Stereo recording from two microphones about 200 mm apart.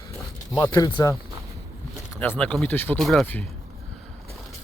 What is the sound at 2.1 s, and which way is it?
Speech, 10° left (ahead or behind).